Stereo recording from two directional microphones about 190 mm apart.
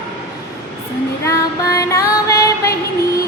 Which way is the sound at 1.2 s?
15° left (ahead or behind).